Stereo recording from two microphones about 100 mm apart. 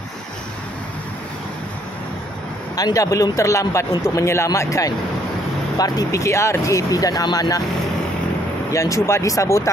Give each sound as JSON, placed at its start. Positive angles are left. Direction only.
{"t": 2.7, "sound": "speech", "side_deg": 40}
{"t": 8.7, "sound": "speech", "side_deg": 30}